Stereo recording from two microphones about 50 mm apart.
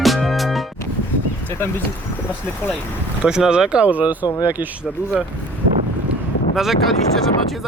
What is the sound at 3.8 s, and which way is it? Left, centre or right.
Speech, right.